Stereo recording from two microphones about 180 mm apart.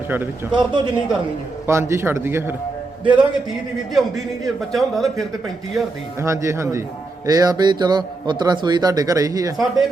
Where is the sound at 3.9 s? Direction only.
Centre (ahead or behind).